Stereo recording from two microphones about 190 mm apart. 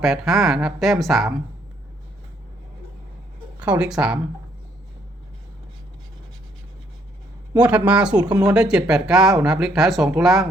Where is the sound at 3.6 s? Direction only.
5° right (ahead or behind).